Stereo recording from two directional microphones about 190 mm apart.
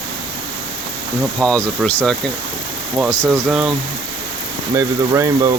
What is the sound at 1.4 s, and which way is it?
Speech, 5° left (ahead or behind).